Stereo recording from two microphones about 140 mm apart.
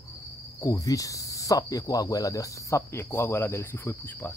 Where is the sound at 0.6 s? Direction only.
25° left (ahead or behind).